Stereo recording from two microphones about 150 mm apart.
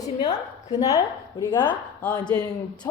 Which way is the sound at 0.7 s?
25° left (ahead or behind).